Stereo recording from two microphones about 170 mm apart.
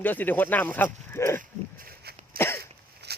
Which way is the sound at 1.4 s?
60° right (ahead or behind).